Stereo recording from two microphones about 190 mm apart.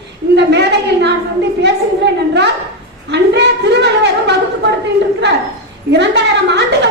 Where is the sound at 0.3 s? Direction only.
60° right (ahead or behind).